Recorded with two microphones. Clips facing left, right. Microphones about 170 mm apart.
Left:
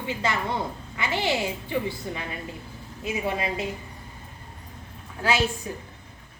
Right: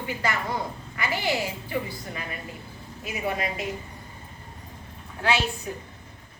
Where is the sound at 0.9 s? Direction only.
25° left (ahead or behind).